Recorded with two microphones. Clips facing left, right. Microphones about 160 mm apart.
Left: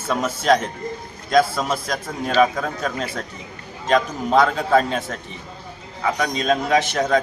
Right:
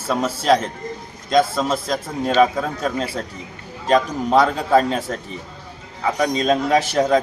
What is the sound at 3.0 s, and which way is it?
A man's voice, 30° right (ahead or behind).